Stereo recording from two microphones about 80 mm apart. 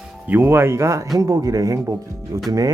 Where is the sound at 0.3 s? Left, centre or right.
Right.